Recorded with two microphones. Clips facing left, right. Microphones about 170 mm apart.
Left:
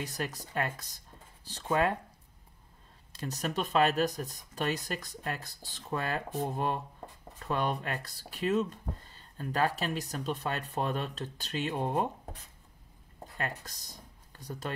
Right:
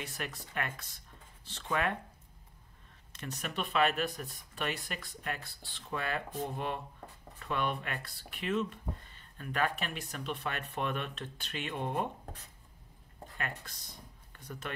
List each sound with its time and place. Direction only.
0.0 s speech: 40° left (ahead or behind)
3.1 s speech: 35° left (ahead or behind)
13.4 s speech: 40° left (ahead or behind)